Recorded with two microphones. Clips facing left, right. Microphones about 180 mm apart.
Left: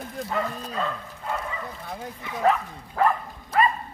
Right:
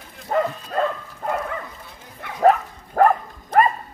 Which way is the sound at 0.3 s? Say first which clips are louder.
Right 8 dB; 45° right (ahead or behind).